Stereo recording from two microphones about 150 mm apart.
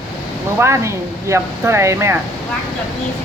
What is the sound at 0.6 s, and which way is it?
Speech, 20° right (ahead or behind).